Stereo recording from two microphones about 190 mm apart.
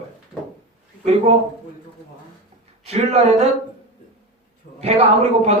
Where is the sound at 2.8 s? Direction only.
35° right (ahead or behind).